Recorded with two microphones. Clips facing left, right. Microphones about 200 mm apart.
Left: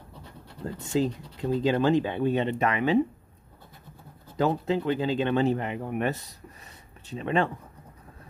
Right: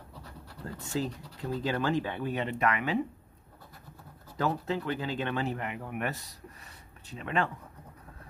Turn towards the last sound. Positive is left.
turn(degrees=25)  # may be behind; listen again after turning